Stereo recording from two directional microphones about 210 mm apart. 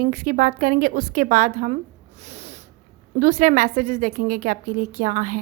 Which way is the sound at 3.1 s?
35° right (ahead or behind).